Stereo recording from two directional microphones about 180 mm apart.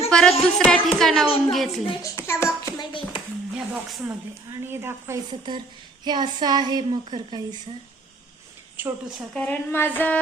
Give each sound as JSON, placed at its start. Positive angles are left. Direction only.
{"t": 0.1, "sound": "speech", "side_deg": 5}
{"t": 1.9, "sound": "a child's voice", "side_deg": 20}
{"t": 2.7, "sound": "hands", "side_deg": 30}
{"t": 3.5, "sound": "a sound", "side_deg": -5}
{"t": 4.6, "sound": "a woman's voice", "side_deg": -15}
{"t": 8.7, "sound": "a woman's voice", "side_deg": -10}
{"t": 9.3, "sound": "speech", "side_deg": 10}